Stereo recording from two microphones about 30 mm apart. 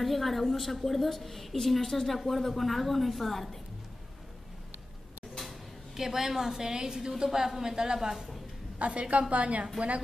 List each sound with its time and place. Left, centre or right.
0.0 s a woman's voice: centre
5.9 s a woman's voice: centre
8.7 s a woman's voice: right
9.8 s a woman's voice: right